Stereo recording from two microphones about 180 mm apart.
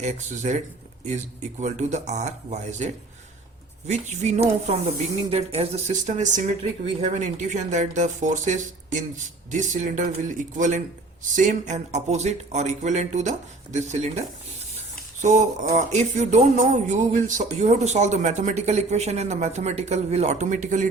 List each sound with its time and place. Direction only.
0.0 s speech: 40° right (ahead or behind)
15.7 s speech: 40° right (ahead or behind)